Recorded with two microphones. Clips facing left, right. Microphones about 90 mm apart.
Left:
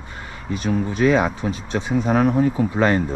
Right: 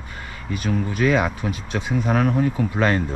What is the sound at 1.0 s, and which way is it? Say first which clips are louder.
Speech: left 2 dB; 30° left (ahead or behind).